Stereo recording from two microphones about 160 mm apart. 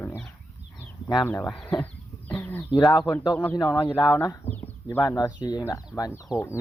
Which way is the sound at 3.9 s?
15° left (ahead or behind).